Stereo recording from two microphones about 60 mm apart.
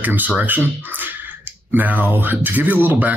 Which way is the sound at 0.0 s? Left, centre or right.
Right.